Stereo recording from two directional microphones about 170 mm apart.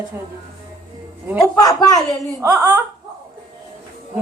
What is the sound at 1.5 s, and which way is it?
Speech, 20° left (ahead or behind).